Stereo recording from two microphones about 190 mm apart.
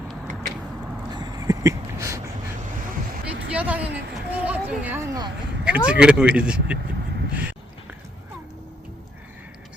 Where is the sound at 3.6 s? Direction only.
10° right (ahead or behind).